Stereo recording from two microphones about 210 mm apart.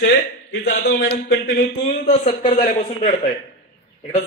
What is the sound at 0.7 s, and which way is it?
Speech, 45° left (ahead or behind).